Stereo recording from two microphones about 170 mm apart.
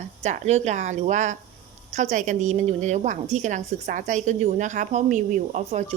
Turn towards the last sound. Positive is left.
turn(degrees=-45)  # may be behind; listen again after turning